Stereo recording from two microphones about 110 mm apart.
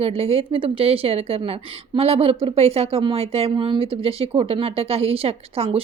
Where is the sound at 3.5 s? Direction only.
50° right (ahead or behind).